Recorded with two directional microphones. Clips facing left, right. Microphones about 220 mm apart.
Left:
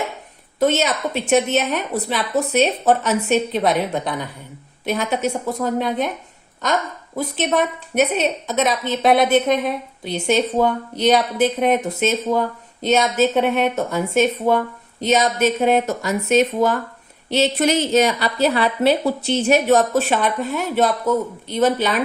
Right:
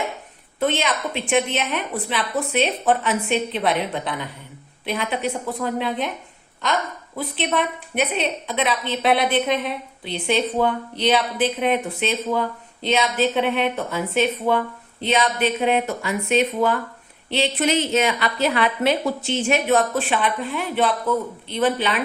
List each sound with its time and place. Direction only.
0.6 s a woman's voice: 40° left (ahead or behind)